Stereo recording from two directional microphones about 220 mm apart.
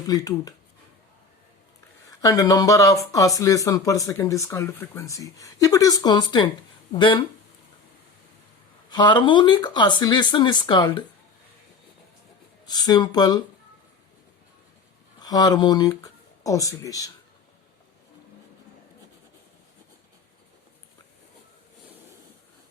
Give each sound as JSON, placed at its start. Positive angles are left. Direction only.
{"t": 0.1, "sound": "speech", "side_deg": 15}
{"t": 2.0, "sound": "speech", "side_deg": 15}
{"t": 8.9, "sound": "speech", "side_deg": 20}
{"t": 12.6, "sound": "speech", "side_deg": 20}
{"t": 15.2, "sound": "speech", "side_deg": 15}